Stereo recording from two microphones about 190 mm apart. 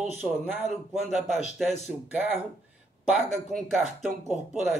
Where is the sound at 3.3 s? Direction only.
Centre (ahead or behind).